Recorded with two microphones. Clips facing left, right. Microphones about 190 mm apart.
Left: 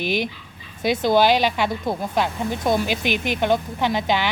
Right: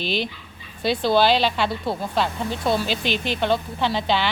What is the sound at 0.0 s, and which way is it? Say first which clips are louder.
Speech: left 2 dB; 15° left (ahead or behind).